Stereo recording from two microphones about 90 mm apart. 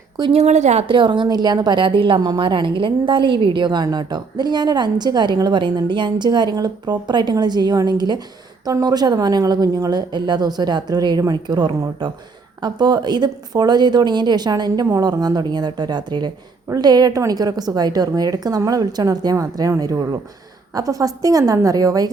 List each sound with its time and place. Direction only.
0.2 s a woman's voice: 45° right (ahead or behind)
0.9 s a woman's voice: 60° right (ahead or behind); by 22.1 s 45° right (ahead or behind)